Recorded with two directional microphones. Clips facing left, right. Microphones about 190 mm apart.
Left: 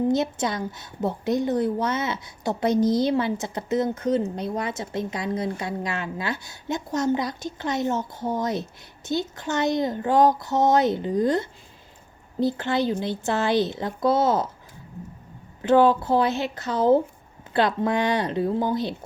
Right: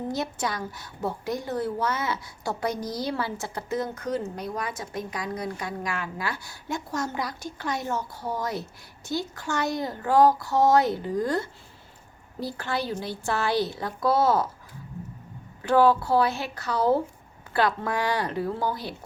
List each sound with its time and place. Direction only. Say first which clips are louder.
0.1 s a woman's voice: left 6 dB; 20° left (ahead or behind)
15.6 s a woman's voice: left 2 dB; 20° left (ahead or behind)